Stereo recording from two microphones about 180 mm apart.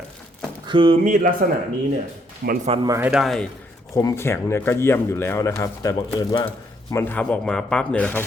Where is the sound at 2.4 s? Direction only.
55° right (ahead or behind).